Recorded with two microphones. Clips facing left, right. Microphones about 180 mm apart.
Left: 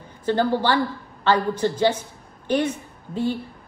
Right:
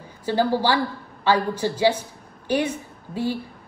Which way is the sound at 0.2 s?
10° right (ahead or behind).